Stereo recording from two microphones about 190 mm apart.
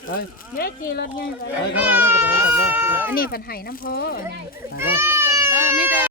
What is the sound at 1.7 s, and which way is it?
Speech, 10° right (ahead or behind).